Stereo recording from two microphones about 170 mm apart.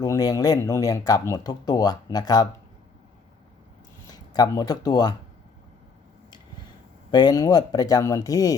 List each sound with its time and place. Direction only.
0.0 s speech: 20° left (ahead or behind)
4.0 s speech: 20° left (ahead or behind)
7.1 s speech: 25° left (ahead or behind)